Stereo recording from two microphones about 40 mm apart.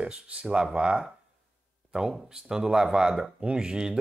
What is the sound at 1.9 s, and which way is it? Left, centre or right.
Speech, centre.